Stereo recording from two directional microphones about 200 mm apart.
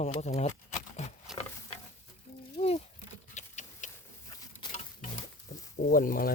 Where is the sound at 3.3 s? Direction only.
35° left (ahead or behind).